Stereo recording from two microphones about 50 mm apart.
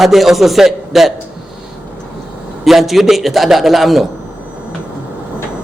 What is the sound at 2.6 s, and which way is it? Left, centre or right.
A man's voice, centre.